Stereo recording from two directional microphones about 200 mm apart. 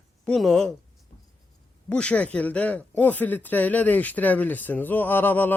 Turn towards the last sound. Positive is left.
turn(degrees=10)  # may be behind; listen again after turning